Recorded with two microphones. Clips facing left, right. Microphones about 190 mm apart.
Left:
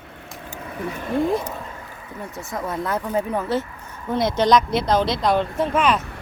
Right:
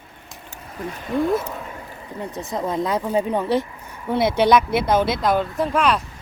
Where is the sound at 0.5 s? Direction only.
70° left (ahead or behind).